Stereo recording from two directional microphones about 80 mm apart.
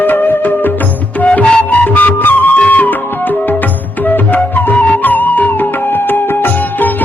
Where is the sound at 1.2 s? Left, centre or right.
Centre.